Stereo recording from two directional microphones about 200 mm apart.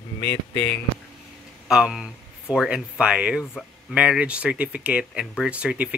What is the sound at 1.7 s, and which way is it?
Speech, 5° right (ahead or behind).